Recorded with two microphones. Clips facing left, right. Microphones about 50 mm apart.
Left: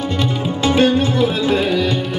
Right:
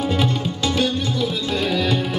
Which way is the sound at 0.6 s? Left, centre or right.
Left.